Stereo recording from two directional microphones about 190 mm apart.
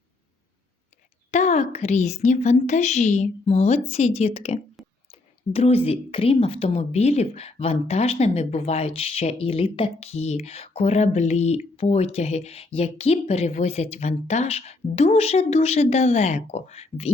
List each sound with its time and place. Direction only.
1.3 s a woman's voice: 40° left (ahead or behind)